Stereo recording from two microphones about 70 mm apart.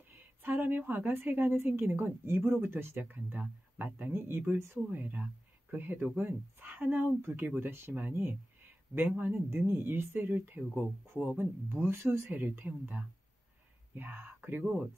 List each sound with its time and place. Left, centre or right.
0.1 s a woman's voice: right